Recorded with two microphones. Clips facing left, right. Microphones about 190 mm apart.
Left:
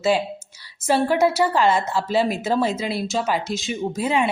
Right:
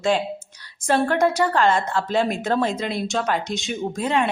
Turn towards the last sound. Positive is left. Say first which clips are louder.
# left 1 dB
turn(degrees=5)  # may be behind; listen again after turning